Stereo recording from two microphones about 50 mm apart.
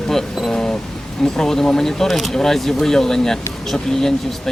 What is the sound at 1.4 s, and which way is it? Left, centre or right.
Speech, centre.